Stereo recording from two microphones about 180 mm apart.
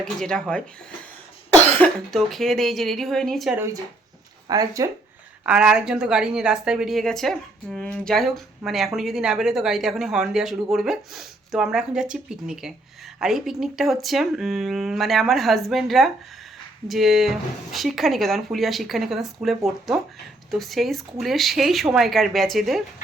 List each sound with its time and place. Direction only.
0.0 s a woman's voice: 5° left (ahead or behind)
4.4 s speech: 20° right (ahead or behind)
5.5 s a woman's voice: 5° right (ahead or behind)